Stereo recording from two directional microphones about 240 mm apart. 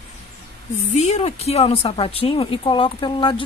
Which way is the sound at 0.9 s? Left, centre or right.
Left.